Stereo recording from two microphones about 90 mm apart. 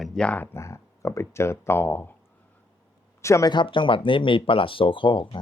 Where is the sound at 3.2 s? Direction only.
35° left (ahead or behind).